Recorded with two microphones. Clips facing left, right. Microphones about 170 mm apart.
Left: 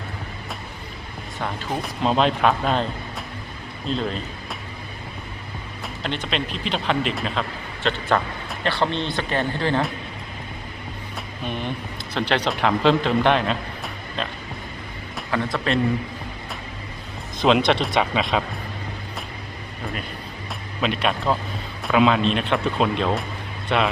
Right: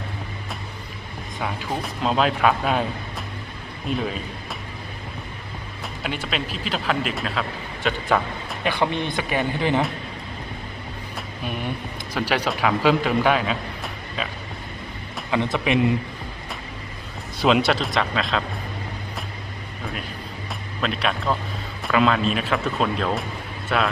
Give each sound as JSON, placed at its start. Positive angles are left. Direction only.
{"t": 1.4, "sound": "speech", "side_deg": -5}
{"t": 5.8, "sound": "speech", "side_deg": -5}
{"t": 12.1, "sound": "a man's voice", "side_deg": -10}
{"t": 15.3, "sound": "speech", "side_deg": -15}
{"t": 17.4, "sound": "speech", "side_deg": -5}
{"t": 19.8, "sound": "a sound", "side_deg": 0}
{"t": 20.8, "sound": "speech", "side_deg": 0}